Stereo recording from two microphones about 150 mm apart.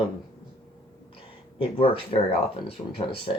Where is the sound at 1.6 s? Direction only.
40° left (ahead or behind).